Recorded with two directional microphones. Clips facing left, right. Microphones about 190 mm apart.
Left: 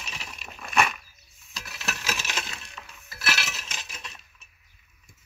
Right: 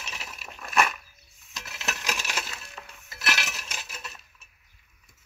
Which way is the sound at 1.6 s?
20° right (ahead or behind).